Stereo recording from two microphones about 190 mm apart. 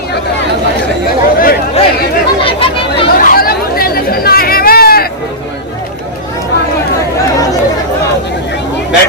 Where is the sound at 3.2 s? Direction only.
50° left (ahead or behind).